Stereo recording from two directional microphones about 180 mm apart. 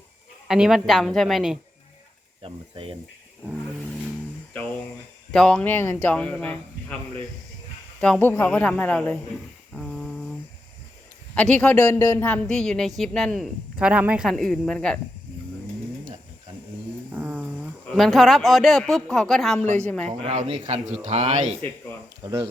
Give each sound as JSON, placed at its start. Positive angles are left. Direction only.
{"t": 0.4, "sound": "speech", "side_deg": -5}
{"t": 2.4, "sound": "speech", "side_deg": -30}
{"t": 5.3, "sound": "speech", "side_deg": 5}
{"t": 8.0, "sound": "speech", "side_deg": 10}
{"t": 9.7, "sound": "humming", "side_deg": 0}
{"t": 11.3, "sound": "speech", "side_deg": 5}
{"t": 17.1, "sound": "speech", "side_deg": -10}
{"t": 19.5, "sound": "speech", "side_deg": -40}
{"t": 22.2, "sound": "speech", "side_deg": -20}